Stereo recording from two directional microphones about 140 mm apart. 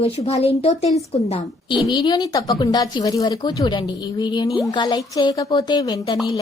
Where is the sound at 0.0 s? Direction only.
50° left (ahead or behind).